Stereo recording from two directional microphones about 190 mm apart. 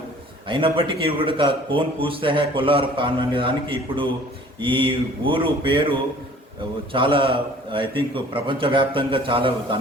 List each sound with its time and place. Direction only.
0.4 s a man's voice: 25° right (ahead or behind)
6.9 s a man's voice: 25° right (ahead or behind)